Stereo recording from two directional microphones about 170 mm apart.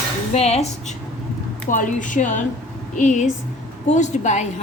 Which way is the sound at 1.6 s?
50° left (ahead or behind).